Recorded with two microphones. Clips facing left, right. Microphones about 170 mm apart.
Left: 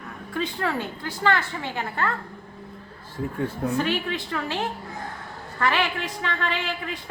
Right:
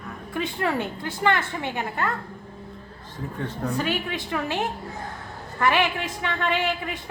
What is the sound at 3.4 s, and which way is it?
Speech, 10° left (ahead or behind).